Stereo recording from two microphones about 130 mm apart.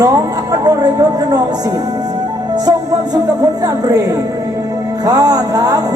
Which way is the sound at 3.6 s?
30° right (ahead or behind).